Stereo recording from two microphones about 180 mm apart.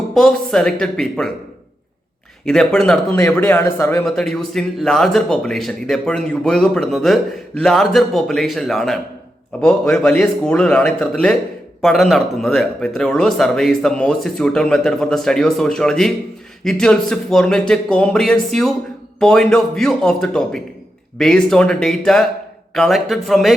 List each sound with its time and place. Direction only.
0.1 s a man's voice: centre (ahead or behind)
2.4 s a man's voice: centre (ahead or behind)